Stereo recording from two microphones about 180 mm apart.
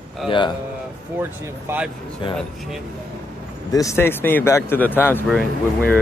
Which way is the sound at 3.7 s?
15° left (ahead or behind).